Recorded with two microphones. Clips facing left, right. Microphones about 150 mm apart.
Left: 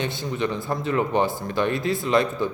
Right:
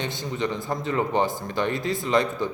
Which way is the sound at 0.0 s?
20° right (ahead or behind).